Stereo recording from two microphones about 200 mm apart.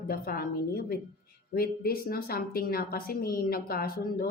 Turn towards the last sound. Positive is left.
turn(degrees=50)  # may be behind; listen again after turning